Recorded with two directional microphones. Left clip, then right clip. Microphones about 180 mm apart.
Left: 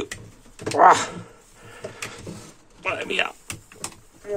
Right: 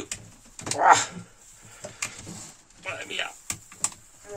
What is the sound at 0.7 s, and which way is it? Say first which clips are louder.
Speech: left 4 dB; 60° left (ahead or behind).